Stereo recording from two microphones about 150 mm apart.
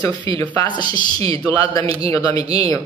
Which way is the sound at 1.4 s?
20° left (ahead or behind).